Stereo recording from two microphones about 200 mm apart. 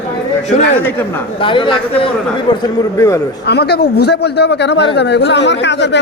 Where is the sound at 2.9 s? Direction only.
15° left (ahead or behind).